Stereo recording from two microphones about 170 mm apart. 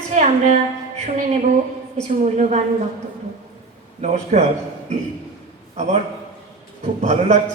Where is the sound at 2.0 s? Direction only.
45° right (ahead or behind).